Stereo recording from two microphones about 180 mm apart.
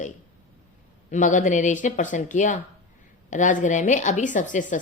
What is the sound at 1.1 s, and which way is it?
A woman's voice, 45° left (ahead or behind).